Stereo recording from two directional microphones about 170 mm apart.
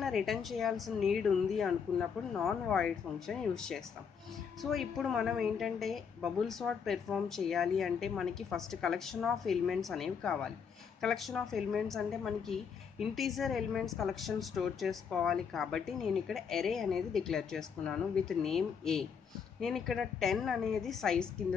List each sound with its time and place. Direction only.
0.0 s a woman's voice: centre (ahead or behind)